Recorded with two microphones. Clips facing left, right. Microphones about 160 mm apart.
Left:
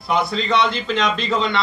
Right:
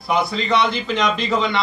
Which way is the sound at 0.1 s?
5° right (ahead or behind).